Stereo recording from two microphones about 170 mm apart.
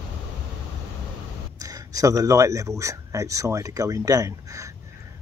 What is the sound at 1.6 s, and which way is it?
Speech, 20° right (ahead or behind).